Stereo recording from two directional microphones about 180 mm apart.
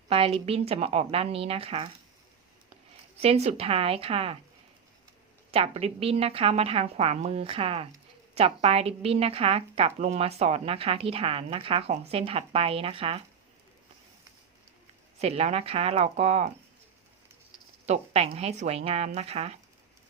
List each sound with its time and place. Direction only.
0.1 s speech: 30° right (ahead or behind)
3.2 s speech: 35° right (ahead or behind)
5.5 s speech: 35° right (ahead or behind)
15.2 s speech: 35° right (ahead or behind)
17.8 s speech: 35° right (ahead or behind)